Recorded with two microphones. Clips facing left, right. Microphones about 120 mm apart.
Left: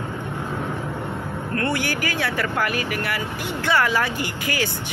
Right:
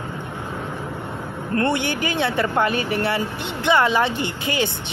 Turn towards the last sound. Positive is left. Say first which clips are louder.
# right 2 dB
turn(degrees=-25)  # may be behind; listen again after turning